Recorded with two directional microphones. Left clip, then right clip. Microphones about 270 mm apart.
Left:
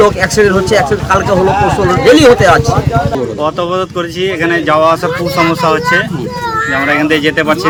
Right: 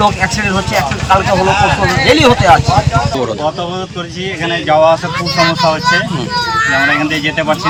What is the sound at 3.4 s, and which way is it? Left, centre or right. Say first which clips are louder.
Speech: left 4 dB; centre.